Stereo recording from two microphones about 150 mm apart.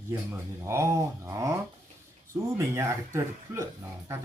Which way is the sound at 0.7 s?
20° right (ahead or behind).